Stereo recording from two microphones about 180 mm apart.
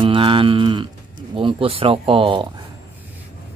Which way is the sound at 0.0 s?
30° right (ahead or behind).